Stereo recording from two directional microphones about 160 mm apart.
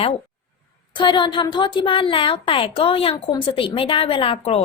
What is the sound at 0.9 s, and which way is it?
A woman's voice, 30° left (ahead or behind).